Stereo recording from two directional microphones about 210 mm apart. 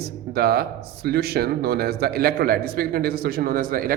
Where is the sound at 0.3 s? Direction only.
50° right (ahead or behind).